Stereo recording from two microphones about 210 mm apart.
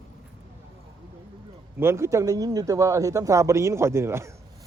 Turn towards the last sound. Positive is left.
turn(degrees=-10)  # may be behind; listen again after turning